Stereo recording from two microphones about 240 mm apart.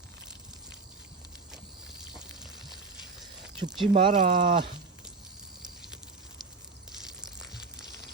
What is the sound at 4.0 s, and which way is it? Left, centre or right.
Speech, right.